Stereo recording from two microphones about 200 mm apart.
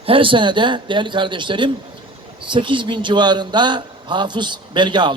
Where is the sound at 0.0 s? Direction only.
25° right (ahead or behind).